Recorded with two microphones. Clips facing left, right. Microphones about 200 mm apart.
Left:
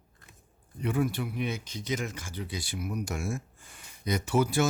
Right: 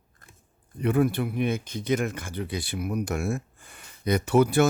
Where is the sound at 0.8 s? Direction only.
60° right (ahead or behind).